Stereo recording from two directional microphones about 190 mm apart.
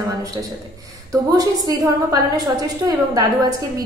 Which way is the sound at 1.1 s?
20° right (ahead or behind).